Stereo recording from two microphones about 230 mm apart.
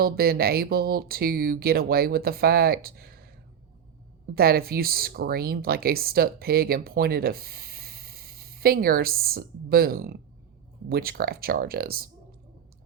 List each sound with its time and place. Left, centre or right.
0.0 s speech: right
4.4 s speech: right